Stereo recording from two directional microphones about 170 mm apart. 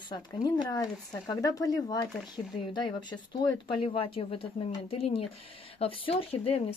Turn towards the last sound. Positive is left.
turn(degrees=35)  # may be behind; listen again after turning